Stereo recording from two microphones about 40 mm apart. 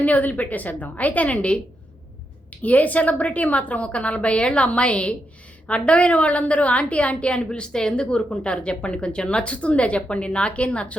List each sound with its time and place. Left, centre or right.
0.0 s a woman's voice: left
2.5 s a woman's voice: left